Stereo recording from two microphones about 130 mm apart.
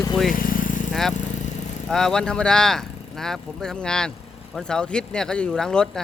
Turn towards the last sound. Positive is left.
turn(degrees=5)  # may be behind; listen again after turning